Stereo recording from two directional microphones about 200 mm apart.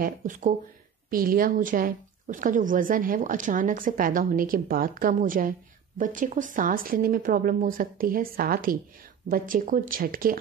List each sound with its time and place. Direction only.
0.0 s speech: 40° right (ahead or behind)